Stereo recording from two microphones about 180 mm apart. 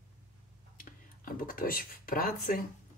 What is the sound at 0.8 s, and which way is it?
Speech, 50° left (ahead or behind).